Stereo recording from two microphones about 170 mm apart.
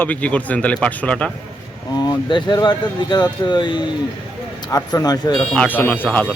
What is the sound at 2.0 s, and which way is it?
Speech, 25° left (ahead or behind).